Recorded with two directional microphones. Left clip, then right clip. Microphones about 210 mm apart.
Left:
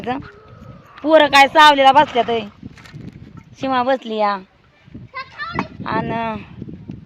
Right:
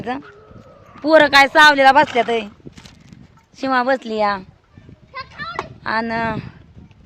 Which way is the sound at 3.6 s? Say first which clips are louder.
Even; 5° right (ahead or behind).